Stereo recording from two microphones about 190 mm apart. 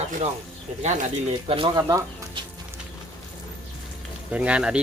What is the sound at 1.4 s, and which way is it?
Speech, 30° right (ahead or behind).